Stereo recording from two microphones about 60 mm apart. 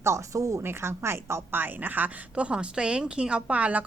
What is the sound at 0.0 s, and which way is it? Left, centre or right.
Speech, right.